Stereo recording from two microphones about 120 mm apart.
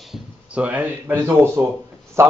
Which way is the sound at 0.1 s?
10° right (ahead or behind).